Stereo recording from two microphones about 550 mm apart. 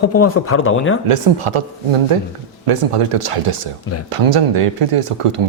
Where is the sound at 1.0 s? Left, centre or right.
Right.